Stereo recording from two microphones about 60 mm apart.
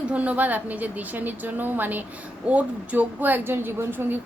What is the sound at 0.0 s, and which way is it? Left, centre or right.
A woman's voice, right.